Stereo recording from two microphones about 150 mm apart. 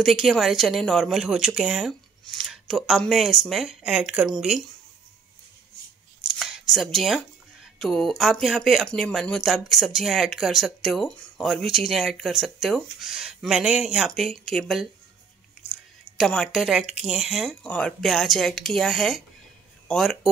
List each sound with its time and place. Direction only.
0.0 s speech: centre (ahead or behind)
6.2 s speech: centre (ahead or behind)
16.2 s speech: centre (ahead or behind)